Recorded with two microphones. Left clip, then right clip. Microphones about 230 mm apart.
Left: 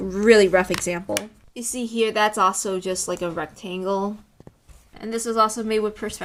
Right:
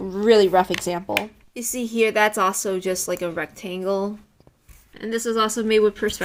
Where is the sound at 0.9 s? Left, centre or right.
Centre.